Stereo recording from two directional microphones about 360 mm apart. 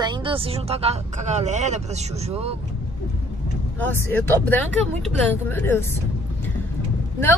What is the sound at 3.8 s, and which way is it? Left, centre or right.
Speech, centre.